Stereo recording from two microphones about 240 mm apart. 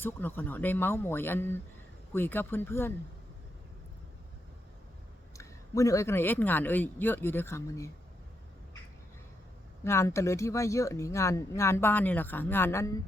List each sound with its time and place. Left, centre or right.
0.0 s speech: centre
5.4 s speech: centre
9.8 s speech: centre